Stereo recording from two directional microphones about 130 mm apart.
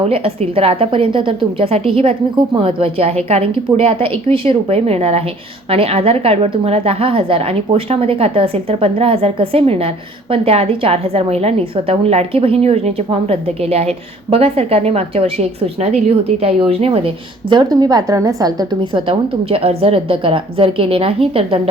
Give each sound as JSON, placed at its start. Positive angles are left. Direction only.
{"t": 0.0, "sound": "a woman's voice", "side_deg": -45}
{"t": 17.5, "sound": "a woman's voice", "side_deg": -30}